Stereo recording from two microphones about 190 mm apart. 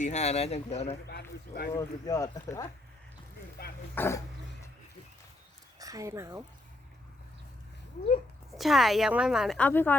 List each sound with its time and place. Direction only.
0.0 s speech: 35° left (ahead or behind)
1.1 s speech: 55° left (ahead or behind)
1.7 s speech: 20° left (ahead or behind)
3.6 s speech: 55° left (ahead or behind)
3.9 s speech: 10° left (ahead or behind)
5.8 s speech: 15° right (ahead or behind)
8.5 s a woman's voice: centre (ahead or behind)